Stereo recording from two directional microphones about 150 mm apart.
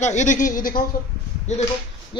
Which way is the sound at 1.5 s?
50° left (ahead or behind).